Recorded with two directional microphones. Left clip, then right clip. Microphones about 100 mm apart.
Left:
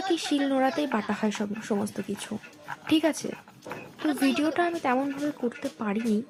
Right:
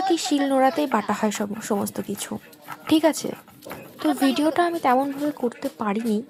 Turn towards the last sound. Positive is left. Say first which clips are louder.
# right 5 dB
turn(degrees=-35)  # may be behind; listen again after turning